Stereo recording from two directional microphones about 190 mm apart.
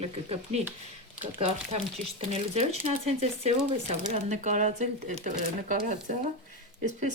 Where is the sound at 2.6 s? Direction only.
35° right (ahead or behind).